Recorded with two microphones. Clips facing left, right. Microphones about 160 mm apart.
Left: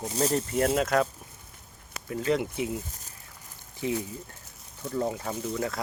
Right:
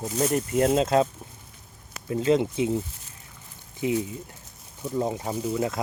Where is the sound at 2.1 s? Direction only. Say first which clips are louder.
Right 5 dB; 20° right (ahead or behind).